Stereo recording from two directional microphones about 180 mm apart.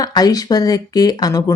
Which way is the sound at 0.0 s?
20° left (ahead or behind).